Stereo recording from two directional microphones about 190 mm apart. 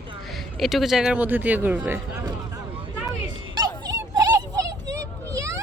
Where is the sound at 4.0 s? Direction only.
15° right (ahead or behind).